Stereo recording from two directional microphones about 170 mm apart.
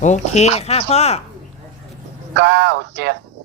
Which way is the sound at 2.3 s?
90° right.